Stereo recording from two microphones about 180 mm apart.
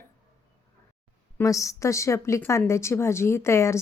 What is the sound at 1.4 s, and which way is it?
Speech, 15° left (ahead or behind).